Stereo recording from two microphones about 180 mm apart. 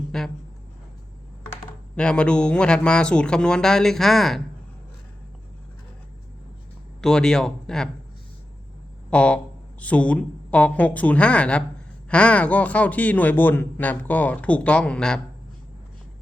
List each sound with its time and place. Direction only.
0.1 s speech: 5° left (ahead or behind)
2.0 s speech: 5° left (ahead or behind)
7.0 s speech: 5° left (ahead or behind)
9.0 s speech: 5° left (ahead or behind)